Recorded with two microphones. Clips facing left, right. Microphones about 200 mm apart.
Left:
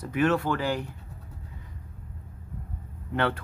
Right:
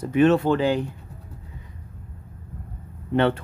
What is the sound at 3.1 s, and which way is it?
Speech, 25° right (ahead or behind).